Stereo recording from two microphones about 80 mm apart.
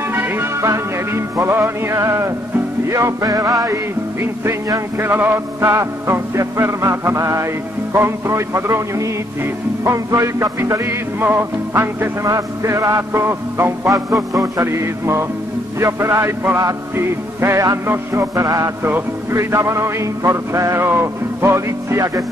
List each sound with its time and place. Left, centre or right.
0.1 s music: right
3.7 s music: right
12.3 s music: right